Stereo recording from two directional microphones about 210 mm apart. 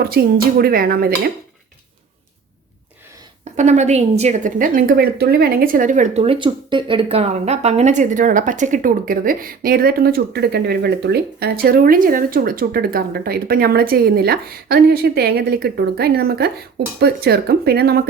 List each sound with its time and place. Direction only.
0.1 s speech: 50° right (ahead or behind)
3.6 s a woman's voice: 35° right (ahead or behind)